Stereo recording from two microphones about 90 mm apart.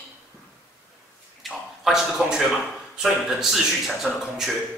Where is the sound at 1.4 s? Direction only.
Centre (ahead or behind).